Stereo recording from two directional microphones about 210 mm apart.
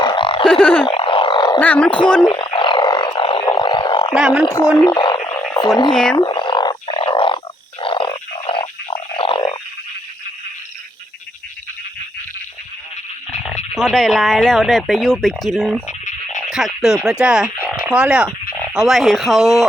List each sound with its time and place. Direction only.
0.0 s a sound: 25° left (ahead or behind)
0.6 s speech: 5° left (ahead or behind)
0.9 s a sound: 25° left (ahead or behind)
1.5 s speech: 5° left (ahead or behind)
2.2 s a sound: 20° left (ahead or behind)
4.1 s speech: 5° right (ahead or behind)
4.5 s speech: 15° left (ahead or behind)
5.9 s speech: 5° left (ahead or behind)
6.1 s a sound: 20° left (ahead or behind)
13.7 s speech: centre (ahead or behind)
15.9 s frog: 35° left (ahead or behind)
16.5 s frog: centre (ahead or behind)
18.7 s speech: centre (ahead or behind)